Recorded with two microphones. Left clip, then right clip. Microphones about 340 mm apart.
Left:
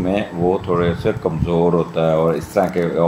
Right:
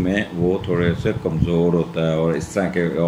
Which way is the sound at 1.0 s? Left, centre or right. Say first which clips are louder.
Left 3 dB; left.